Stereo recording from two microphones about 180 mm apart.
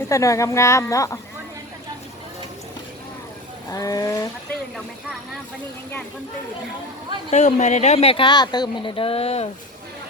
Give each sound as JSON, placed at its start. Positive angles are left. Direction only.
{"t": 0.1, "sound": "speech", "side_deg": 15}
{"t": 3.7, "sound": "speech", "side_deg": 20}
{"t": 7.3, "sound": "speech", "side_deg": 40}